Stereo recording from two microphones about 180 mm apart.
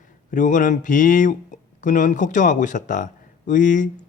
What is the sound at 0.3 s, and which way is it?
Speech, 45° left (ahead or behind).